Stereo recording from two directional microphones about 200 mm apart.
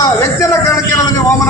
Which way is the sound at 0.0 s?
15° left (ahead or behind).